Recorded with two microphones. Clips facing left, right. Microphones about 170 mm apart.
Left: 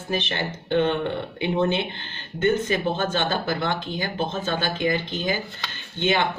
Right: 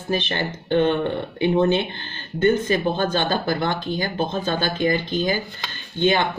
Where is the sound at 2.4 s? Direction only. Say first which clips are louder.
Right 3 dB; 35° right (ahead or behind).